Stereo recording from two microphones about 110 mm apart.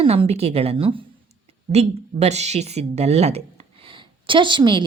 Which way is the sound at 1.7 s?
80° right.